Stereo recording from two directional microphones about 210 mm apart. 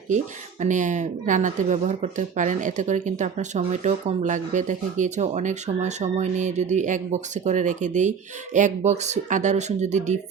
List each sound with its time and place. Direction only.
0.6 s speech: 35° right (ahead or behind)